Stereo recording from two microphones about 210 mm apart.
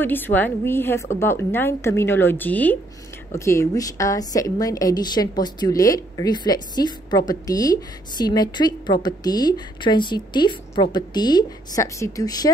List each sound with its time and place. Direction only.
0.0 s a woman's voice: 10° left (ahead or behind)